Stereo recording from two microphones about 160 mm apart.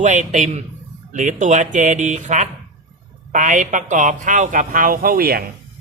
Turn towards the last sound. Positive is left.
turn(degrees=-70)  # may be behind; listen again after turning